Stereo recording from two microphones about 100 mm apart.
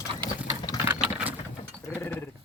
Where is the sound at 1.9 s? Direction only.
15° left (ahead or behind).